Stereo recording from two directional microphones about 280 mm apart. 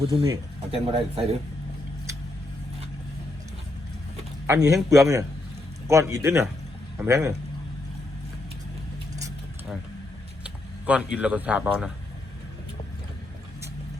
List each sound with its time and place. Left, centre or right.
0.1 s speech: centre
4.4 s a man's voice: centre
10.4 s speech: centre